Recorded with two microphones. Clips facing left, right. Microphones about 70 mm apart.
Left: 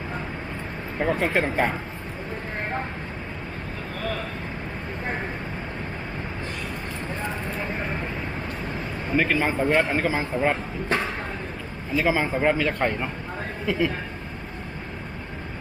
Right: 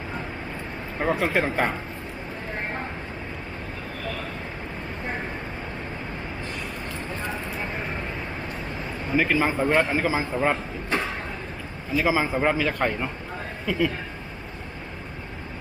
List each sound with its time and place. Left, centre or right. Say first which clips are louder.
0.9 s a man's voice: even; centre
9.1 s a man's voice: even; centre
11.9 s a man's voice: even; centre